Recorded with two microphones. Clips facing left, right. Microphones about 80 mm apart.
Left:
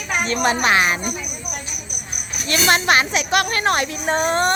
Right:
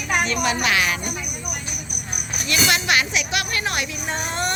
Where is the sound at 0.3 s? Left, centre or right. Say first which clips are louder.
Left 4 dB; left.